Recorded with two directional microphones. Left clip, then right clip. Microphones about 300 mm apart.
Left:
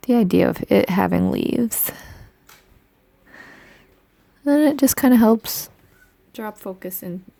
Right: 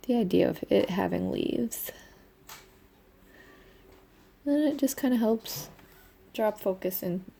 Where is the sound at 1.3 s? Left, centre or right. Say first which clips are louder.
Left 7 dB; left.